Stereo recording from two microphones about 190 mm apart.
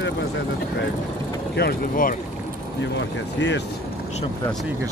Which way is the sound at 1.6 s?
50° left (ahead or behind).